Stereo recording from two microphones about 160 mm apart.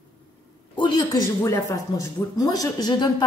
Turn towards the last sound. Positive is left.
turn(degrees=25)  # may be behind; listen again after turning